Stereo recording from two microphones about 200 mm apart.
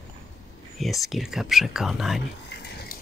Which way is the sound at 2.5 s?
50° left (ahead or behind).